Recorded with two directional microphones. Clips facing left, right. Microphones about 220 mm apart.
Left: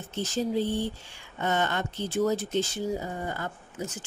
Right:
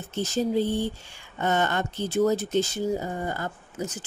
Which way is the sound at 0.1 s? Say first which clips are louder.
Right 3 dB; 40° right (ahead or behind).